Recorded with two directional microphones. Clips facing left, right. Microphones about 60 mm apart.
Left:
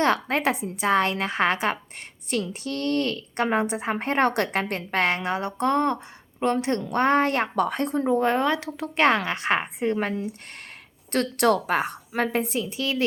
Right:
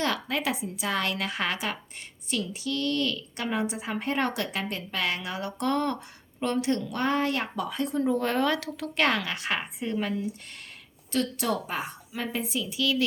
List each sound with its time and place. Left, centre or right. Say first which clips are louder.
0.0 s a woman's voice: left 6 dB; left
0.9 s a woman's voice: left 7 dB; left
8.1 s a woman's voice: left 6 dB; left
11.1 s a woman's voice: left 6 dB; left